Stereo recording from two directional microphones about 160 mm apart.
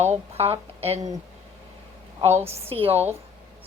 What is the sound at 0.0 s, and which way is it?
Speech, 40° right (ahead or behind).